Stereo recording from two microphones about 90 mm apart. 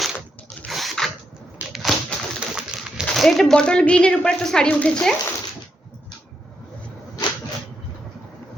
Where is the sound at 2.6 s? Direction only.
10° right (ahead or behind).